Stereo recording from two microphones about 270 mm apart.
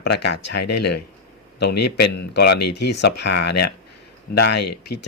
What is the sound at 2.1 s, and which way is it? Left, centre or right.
Speech, left.